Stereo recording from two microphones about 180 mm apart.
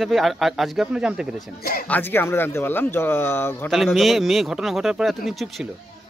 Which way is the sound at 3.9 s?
Centre (ahead or behind).